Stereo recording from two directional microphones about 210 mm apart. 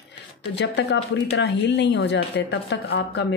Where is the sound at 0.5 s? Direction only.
55° left (ahead or behind).